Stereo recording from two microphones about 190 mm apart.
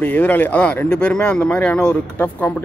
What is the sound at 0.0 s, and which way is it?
Speech, 10° left (ahead or behind).